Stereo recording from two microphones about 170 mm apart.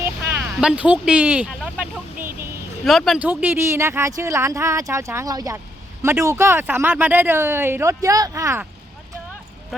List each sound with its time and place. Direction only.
0.6 s speech: 5° right (ahead or behind)